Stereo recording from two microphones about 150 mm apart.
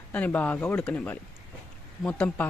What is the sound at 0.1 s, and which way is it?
Speech, 10° left (ahead or behind).